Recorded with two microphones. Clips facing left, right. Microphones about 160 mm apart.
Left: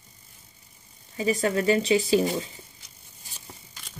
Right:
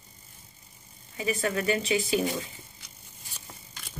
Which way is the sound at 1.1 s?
35° left (ahead or behind).